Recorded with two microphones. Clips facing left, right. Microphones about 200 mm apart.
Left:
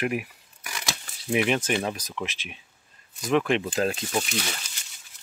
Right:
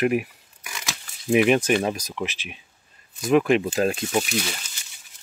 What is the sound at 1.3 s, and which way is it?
Speech, 15° right (ahead or behind).